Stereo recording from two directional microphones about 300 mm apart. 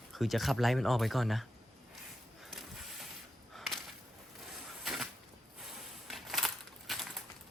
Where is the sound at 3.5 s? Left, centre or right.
Centre.